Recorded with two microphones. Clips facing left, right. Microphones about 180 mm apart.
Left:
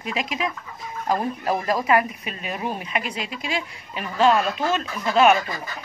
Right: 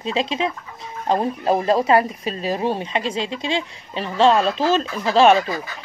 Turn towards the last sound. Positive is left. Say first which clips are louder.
# right 3 dB
turn(degrees=-30)  # may be behind; listen again after turning